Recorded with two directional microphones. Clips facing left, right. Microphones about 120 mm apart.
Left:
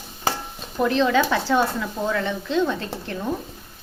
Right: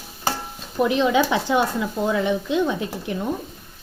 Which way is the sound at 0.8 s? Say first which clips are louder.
Right 1 dB; 15° right (ahead or behind).